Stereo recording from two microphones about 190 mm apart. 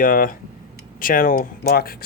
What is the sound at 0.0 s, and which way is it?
Speech, 45° left (ahead or behind).